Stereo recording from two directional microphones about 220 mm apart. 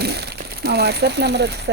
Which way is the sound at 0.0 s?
50° right (ahead or behind).